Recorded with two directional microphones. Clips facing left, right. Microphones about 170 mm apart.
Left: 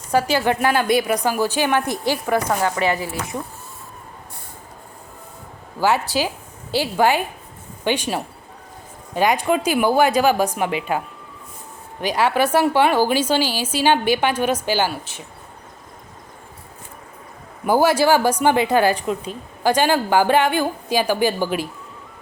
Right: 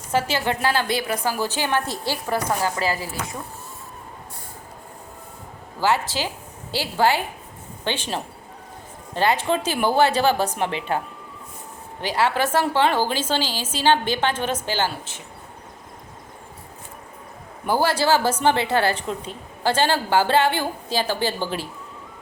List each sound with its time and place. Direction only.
0.2 s a woman's voice: 15° left (ahead or behind)
2.7 s a woman's voice: 30° right (ahead or behind)
5.8 s a woman's voice: 15° left (ahead or behind)
17.7 s a woman's voice: 10° left (ahead or behind)